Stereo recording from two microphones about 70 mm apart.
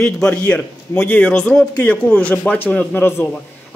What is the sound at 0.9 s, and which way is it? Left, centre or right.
Speech, left.